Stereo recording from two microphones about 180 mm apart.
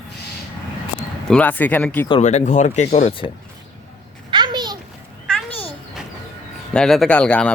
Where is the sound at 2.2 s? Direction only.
40° left (ahead or behind).